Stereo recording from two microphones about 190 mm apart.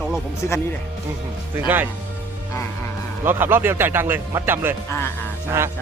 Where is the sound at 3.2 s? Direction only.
10° right (ahead or behind).